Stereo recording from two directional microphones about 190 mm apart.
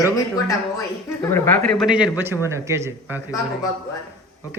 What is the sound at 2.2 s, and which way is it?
Speech, 15° right (ahead or behind).